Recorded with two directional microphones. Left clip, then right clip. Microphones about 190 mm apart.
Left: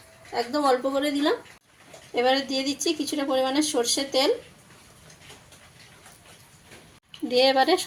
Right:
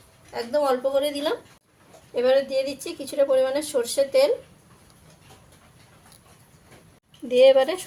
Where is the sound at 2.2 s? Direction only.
25° left (ahead or behind).